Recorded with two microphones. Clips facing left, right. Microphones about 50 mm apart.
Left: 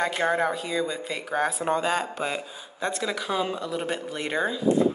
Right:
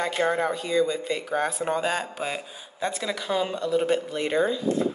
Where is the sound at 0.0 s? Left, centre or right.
Centre.